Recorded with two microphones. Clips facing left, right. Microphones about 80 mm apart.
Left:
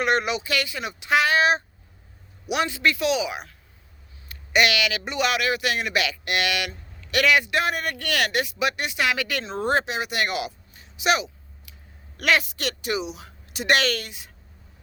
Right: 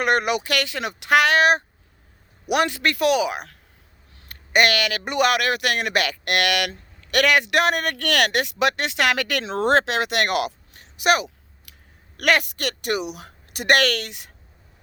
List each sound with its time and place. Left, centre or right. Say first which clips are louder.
0.0 s speech: right 2 dB; right
4.3 s a man's voice: right 2 dB; right